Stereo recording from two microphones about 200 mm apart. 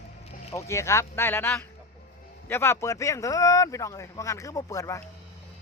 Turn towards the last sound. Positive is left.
turn(degrees=15)  # may be behind; listen again after turning